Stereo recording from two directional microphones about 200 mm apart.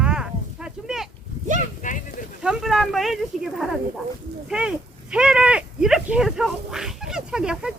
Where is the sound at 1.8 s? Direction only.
40° left (ahead or behind).